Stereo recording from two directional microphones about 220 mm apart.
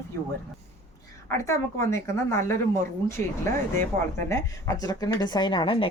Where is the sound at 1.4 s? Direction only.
15° left (ahead or behind).